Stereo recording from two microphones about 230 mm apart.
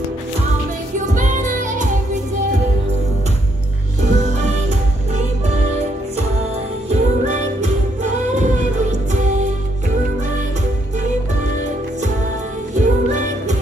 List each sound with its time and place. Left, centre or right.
0.9 s music: right
4.0 s music: right
6.9 s music: right
12.7 s music: right